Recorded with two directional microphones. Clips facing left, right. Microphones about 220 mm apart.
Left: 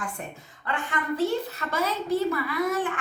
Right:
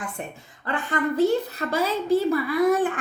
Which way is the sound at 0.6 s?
35° right (ahead or behind).